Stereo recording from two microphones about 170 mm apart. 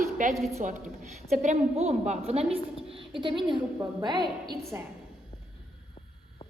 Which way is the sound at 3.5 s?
25° right (ahead or behind).